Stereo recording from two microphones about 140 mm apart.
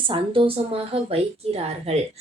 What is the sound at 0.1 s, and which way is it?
A woman's voice, 40° right (ahead or behind).